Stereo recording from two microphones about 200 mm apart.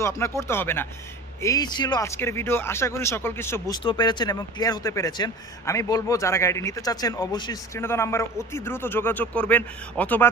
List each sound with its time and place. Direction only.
0.0 s speech: 15° left (ahead or behind)
3.8 s speech: 20° left (ahead or behind)